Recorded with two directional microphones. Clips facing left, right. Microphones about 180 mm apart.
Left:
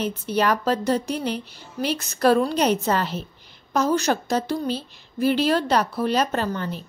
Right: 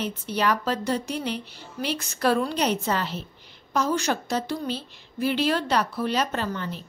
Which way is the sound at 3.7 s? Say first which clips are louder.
Left 4 dB; 40° left (ahead or behind).